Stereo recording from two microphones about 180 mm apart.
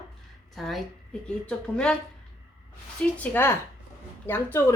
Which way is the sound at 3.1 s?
10° left (ahead or behind).